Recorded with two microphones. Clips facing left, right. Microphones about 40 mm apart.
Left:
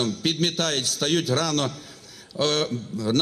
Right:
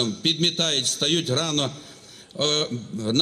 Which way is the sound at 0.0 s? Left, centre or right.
Right.